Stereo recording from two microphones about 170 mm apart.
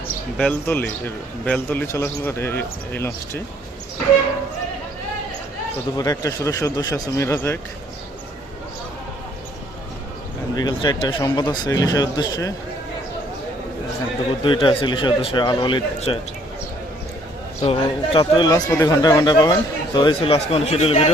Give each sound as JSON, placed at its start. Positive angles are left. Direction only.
{"t": 0.3, "sound": "a man's voice", "side_deg": 10}
{"t": 6.0, "sound": "speech", "side_deg": 20}
{"t": 10.5, "sound": "speech", "side_deg": 25}
{"t": 14.4, "sound": "speech", "side_deg": 30}
{"t": 17.6, "sound": "speech", "side_deg": 35}